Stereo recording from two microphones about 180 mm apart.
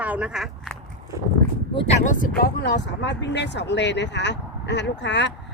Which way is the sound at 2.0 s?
45° left (ahead or behind).